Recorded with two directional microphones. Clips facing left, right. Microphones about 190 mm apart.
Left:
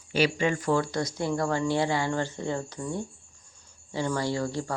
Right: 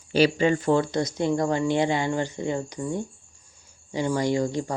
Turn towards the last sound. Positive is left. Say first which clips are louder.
# right 5 dB
turn(degrees=-15)  # may be behind; listen again after turning